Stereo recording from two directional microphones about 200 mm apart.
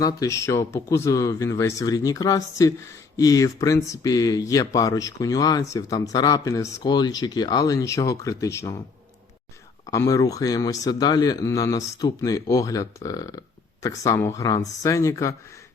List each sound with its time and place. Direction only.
0.0 s speech: 15° left (ahead or behind)
9.8 s speech: 15° left (ahead or behind)